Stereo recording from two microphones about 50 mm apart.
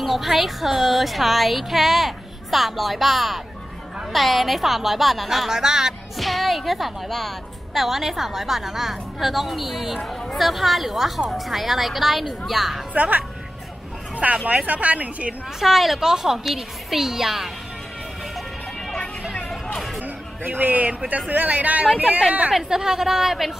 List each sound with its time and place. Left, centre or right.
0.0 s a woman's voice: centre
5.5 s a woman's voice: centre
12.9 s a woman's voice: right
15.6 s a woman's voice: centre
19.5 s music: centre
20.4 s a woman's voice: right
22.5 s a woman's voice: centre